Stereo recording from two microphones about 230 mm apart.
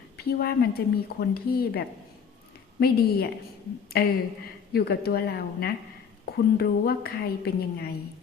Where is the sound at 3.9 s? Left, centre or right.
Left.